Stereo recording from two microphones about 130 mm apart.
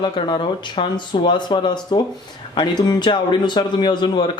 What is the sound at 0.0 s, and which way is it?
Speech, 40° left (ahead or behind).